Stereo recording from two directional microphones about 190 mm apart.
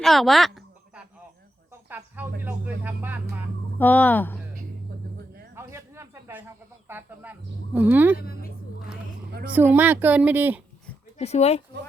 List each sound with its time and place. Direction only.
0.0 s a sound: centre (ahead or behind)
2.4 s vehicle: 10° right (ahead or behind)
3.8 s speech: 10° left (ahead or behind)
5.5 s snake: 15° right (ahead or behind)
8.2 s speech: 50° left (ahead or behind)
9.5 s speech: 10° right (ahead or behind)
11.2 s speech: 35° left (ahead or behind)